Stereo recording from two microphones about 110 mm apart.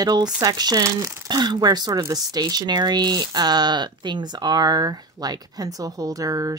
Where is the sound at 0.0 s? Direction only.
40° right (ahead or behind).